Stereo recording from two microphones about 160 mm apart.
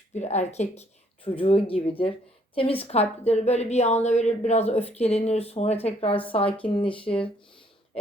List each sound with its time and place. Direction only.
0.1 s a woman's voice: 45° left (ahead or behind)